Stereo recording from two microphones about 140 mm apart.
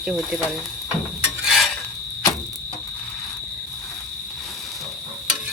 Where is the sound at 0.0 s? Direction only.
5° right (ahead or behind).